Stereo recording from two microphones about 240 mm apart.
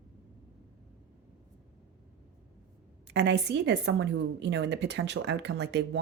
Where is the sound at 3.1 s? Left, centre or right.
Right.